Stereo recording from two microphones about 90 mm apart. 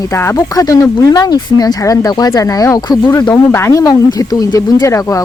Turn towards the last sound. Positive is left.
turn(degrees=35)  # may be behind; listen again after turning